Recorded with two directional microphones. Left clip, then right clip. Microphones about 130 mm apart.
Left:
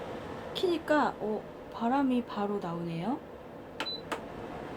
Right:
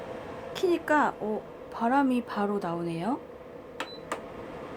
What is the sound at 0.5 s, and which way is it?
Speech, 35° right (ahead or behind).